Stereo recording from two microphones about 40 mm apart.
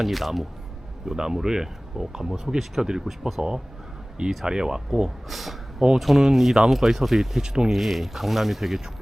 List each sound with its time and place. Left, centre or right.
0.0 s speech: centre
1.0 s speech: centre
4.4 s speech: centre
7.4 s speech: centre
7.7 s speech: centre